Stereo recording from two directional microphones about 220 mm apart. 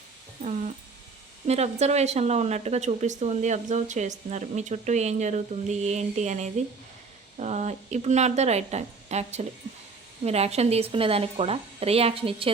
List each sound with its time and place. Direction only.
1.5 s speech: 30° right (ahead or behind)